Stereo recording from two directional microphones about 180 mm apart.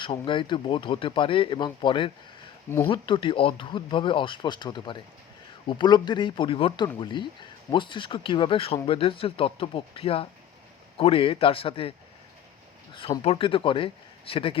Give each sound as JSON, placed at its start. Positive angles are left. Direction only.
{"t": 0.0, "sound": "speech", "side_deg": 25}
{"t": 2.6, "sound": "speech", "side_deg": 15}
{"t": 2.9, "sound": "a man's voice", "side_deg": 30}